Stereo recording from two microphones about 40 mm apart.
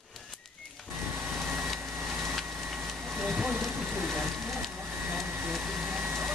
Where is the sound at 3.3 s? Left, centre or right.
Centre.